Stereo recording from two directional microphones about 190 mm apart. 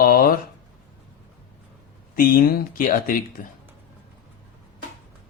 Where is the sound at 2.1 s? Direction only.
45° left (ahead or behind).